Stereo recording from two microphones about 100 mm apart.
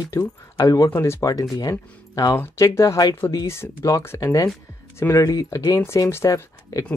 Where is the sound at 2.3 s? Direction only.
25° left (ahead or behind).